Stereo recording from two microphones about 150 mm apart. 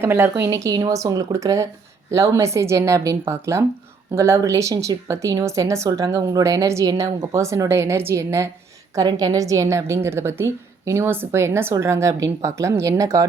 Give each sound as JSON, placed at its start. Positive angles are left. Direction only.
{"t": 0.0, "sound": "a woman's voice", "side_deg": -15}